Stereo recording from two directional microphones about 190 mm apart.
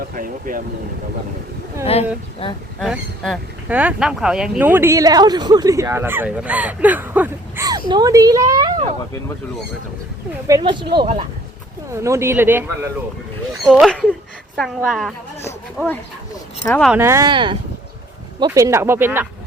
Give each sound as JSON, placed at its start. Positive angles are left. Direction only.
{"t": 0.1, "sound": "speech", "side_deg": -45}
{"t": 1.9, "sound": "speech", "side_deg": 30}
{"t": 2.8, "sound": "speech", "side_deg": -5}
{"t": 10.4, "sound": "speech", "side_deg": -20}
{"t": 11.9, "sound": "a woman's voice", "side_deg": -15}
{"t": 17.0, "sound": "speech", "side_deg": -15}
{"t": 17.2, "sound": "speech", "side_deg": -25}